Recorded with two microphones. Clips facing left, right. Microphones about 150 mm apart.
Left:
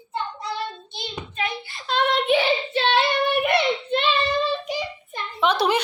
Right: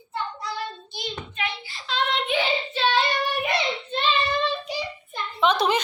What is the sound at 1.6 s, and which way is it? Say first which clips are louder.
Child singing: left 5 dB; 50° left (ahead or behind).